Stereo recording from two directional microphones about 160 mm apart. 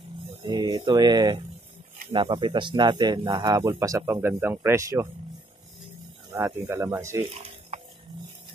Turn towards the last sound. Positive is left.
turn(degrees=-40)  # may be behind; listen again after turning